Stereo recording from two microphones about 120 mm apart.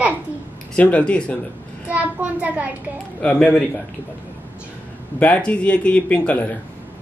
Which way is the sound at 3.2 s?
10° left (ahead or behind).